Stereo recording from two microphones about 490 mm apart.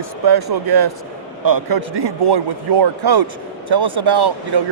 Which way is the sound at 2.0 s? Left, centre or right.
Right.